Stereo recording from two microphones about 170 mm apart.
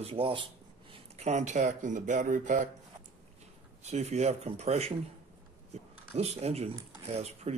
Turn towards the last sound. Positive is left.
turn(degrees=-40)  # may be behind; listen again after turning